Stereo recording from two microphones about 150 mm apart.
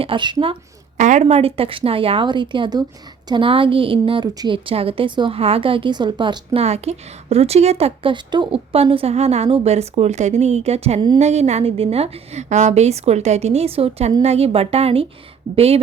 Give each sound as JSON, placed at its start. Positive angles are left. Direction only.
{"t": 0.0, "sound": "a woman's voice", "side_deg": -35}
{"t": 0.9, "sound": "a woman's voice", "side_deg": -50}